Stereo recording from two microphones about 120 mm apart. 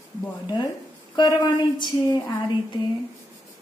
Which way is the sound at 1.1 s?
35° left (ahead or behind).